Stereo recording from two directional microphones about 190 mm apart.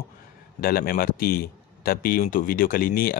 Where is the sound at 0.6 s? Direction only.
50° left (ahead or behind).